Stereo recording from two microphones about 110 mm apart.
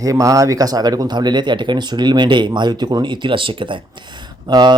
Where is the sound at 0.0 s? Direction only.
30° right (ahead or behind).